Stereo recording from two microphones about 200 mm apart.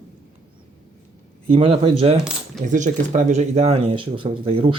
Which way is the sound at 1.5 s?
30° right (ahead or behind).